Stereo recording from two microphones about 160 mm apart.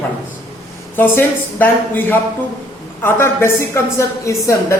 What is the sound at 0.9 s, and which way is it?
A woman's voice, 10° left (ahead or behind).